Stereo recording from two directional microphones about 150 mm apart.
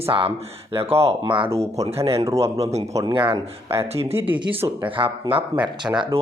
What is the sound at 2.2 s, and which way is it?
Speech, 20° right (ahead or behind).